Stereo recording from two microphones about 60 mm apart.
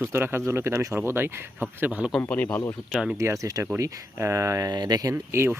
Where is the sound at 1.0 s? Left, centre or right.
Right.